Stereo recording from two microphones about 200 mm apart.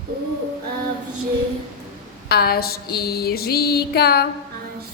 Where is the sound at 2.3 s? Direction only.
50° left (ahead or behind).